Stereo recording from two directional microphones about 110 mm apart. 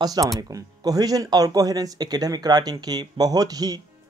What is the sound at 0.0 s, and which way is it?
Speech, 35° right (ahead or behind).